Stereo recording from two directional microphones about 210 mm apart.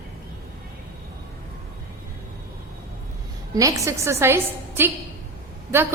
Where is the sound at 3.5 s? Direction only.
15° right (ahead or behind).